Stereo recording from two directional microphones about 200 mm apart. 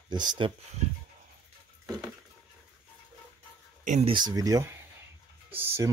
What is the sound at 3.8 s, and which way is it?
Speech, 35° right (ahead or behind).